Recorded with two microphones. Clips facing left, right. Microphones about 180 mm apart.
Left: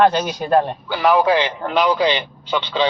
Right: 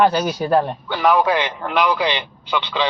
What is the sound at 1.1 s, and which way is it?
Speech, 20° left (ahead or behind).